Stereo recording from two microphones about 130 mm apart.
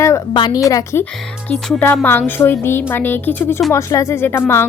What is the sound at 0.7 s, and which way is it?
Speech, 25° left (ahead or behind).